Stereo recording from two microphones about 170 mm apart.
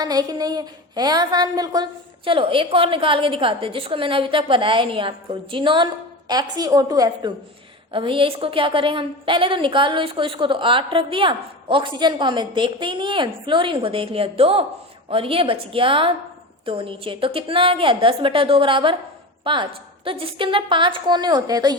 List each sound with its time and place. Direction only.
0.0 s a woman's voice: 20° right (ahead or behind)